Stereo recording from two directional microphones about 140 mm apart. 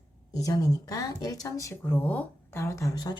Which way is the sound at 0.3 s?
25° left (ahead or behind).